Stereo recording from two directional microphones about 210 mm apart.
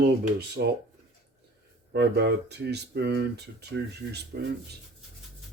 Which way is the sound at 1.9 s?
50° right (ahead or behind).